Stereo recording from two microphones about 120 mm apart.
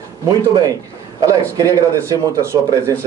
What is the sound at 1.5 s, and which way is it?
Speech, 30° right (ahead or behind).